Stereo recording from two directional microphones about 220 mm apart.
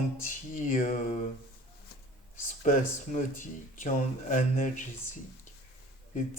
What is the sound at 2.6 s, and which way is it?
Speech, 35° left (ahead or behind).